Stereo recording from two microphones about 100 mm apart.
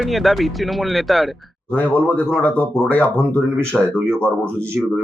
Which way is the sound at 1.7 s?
20° left (ahead or behind).